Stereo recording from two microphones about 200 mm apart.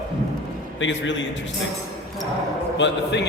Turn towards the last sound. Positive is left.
turn(degrees=60)  # may be behind; listen again after turning